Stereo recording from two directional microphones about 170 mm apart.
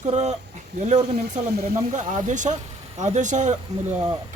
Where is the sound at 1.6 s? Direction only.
45° right (ahead or behind).